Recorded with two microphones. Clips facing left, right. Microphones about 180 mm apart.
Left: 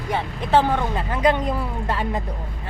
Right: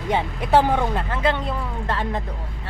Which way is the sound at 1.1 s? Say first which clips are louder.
Left 3 dB; 15° left (ahead or behind).